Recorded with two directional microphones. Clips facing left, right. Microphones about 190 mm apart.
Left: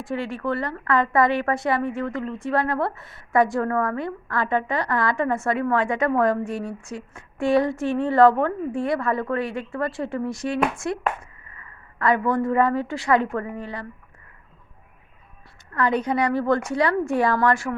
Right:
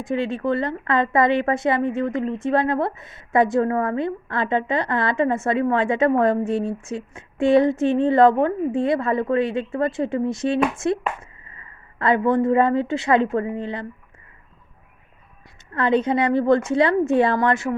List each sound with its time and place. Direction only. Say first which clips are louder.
0.0 s a woman's voice: right 4 dB; 20° right (ahead or behind)
15.7 s a woman's voice: right 3 dB; 25° right (ahead or behind)